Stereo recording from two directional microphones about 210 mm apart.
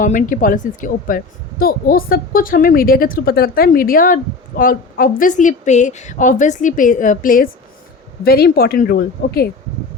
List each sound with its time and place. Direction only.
0.0 s a woman's voice: 40° left (ahead or behind)